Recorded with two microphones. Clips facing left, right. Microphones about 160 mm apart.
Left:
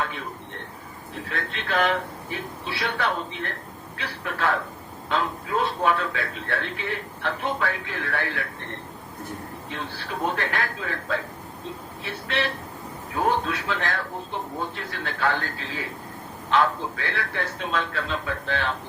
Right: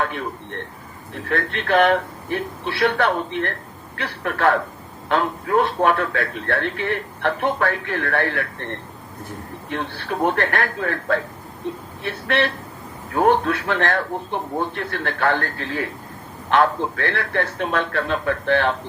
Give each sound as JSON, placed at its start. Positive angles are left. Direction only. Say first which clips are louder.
{"t": 1.3, "sound": "a man's voice", "louder": "right 9 dB", "side_deg": -60}
{"t": 9.6, "sound": "a man's voice", "louder": "right 8 dB", "side_deg": -60}